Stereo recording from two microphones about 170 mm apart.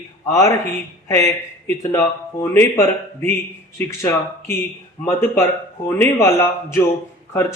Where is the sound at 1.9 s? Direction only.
15° left (ahead or behind).